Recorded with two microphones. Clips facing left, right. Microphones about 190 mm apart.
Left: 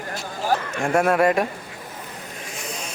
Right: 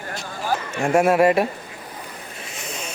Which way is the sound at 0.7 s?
5° right (ahead or behind).